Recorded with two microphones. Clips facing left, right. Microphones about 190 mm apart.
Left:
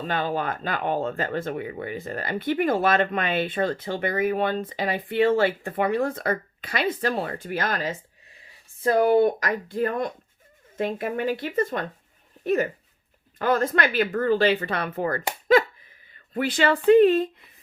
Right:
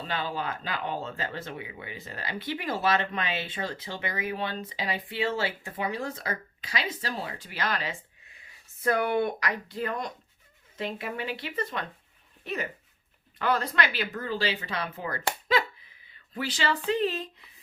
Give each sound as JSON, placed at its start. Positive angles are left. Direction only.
{"t": 0.1, "sound": "speech", "side_deg": 50}
{"t": 8.8, "sound": "speech", "side_deg": 30}
{"t": 13.4, "sound": "speech", "side_deg": 45}